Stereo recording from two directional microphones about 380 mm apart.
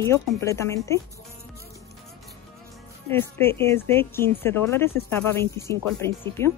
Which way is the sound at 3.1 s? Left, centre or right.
Centre.